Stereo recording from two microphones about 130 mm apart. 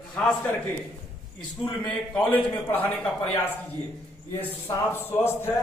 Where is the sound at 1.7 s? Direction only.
10° left (ahead or behind).